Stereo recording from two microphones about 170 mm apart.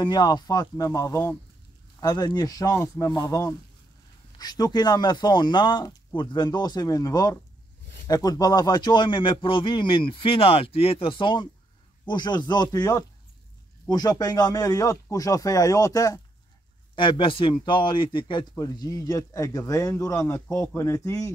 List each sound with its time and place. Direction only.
0.0 s a man's voice: 25° left (ahead or behind)